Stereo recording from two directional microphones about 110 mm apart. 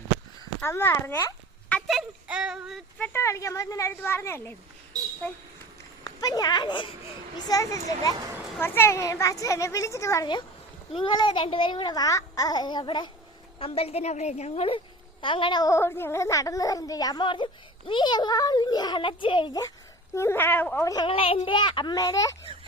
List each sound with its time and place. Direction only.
0.6 s a woman's voice: 20° left (ahead or behind)
1.9 s speech: 5° right (ahead or behind)
3.0 s a woman's voice: 20° left (ahead or behind)
6.1 s a child's voice: 35° left (ahead or behind)
7.3 s a child's voice: 35° left (ahead or behind)
8.5 s a woman's voice: 20° left (ahead or behind)
10.9 s a child's voice: 50° left (ahead or behind)
13.6 s a woman's voice: 60° left (ahead or behind)
15.2 s a child's voice: 50° left (ahead or behind)
15.7 s a child's voice: 20° left (ahead or behind); by 19.5 s 50° left (ahead or behind)
20.1 s a woman's voice: 20° left (ahead or behind)
20.8 s a child's voice: 40° left (ahead or behind)
21.1 s a child's voice: 60° left (ahead or behind)
21.9 s a child's voice: 35° left (ahead or behind)